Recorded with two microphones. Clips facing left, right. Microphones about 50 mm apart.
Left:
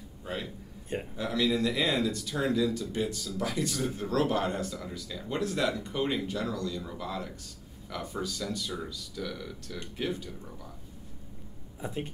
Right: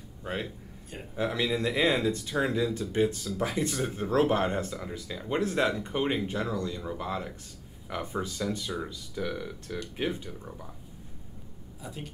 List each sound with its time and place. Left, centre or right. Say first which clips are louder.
0.2 s a sound: right 2 dB; right
1.1 s speech: right 1 dB; right
11.8 s speech: left 5 dB; left